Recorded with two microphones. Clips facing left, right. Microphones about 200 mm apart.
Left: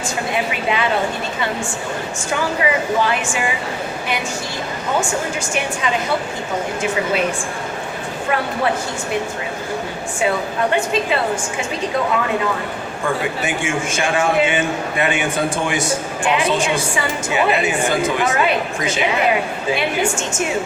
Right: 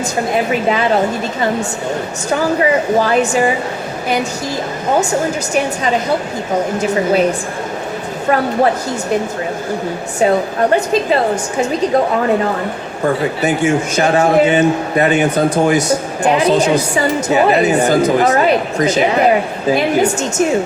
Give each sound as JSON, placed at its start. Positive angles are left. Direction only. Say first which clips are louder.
{"t": 0.3, "sound": "a man's voice", "louder": "right 6 dB", "side_deg": -40}
{"t": 2.3, "sound": "a man's voice", "louder": "right 6 dB", "side_deg": -40}
{"t": 6.7, "sound": "a man's voice", "louder": "right 6 dB", "side_deg": -40}
{"t": 10.2, "sound": "a man's voice", "louder": "right 6 dB", "side_deg": -40}
{"t": 13.4, "sound": "a man's voice", "louder": "right 7 dB", "side_deg": -40}